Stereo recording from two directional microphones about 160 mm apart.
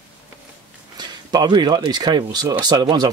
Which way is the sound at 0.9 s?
25° right (ahead or behind).